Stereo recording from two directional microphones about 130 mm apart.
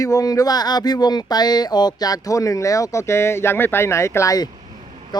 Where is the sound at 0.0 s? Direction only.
25° left (ahead or behind).